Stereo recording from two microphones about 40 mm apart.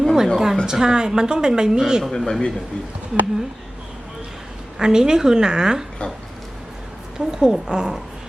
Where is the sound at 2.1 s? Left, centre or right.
Centre.